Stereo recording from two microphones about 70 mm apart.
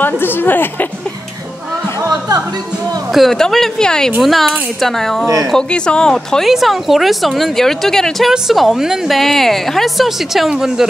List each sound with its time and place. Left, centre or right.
0.0 s a woman's voice: left
2.0 s speech: right
3.1 s a woman's voice: centre
5.2 s speech: right
5.5 s speech: centre
6.5 s a woman's voice: centre